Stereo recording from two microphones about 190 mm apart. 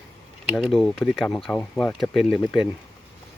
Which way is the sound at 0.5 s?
Centre (ahead or behind).